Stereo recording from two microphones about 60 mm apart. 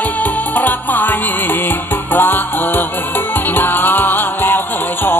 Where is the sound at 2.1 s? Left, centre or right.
Left.